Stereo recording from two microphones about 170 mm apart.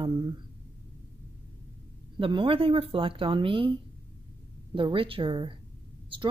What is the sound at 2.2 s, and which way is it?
Speech, 30° right (ahead or behind).